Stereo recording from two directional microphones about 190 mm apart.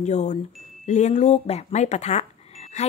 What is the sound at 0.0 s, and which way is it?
Speech, 40° left (ahead or behind).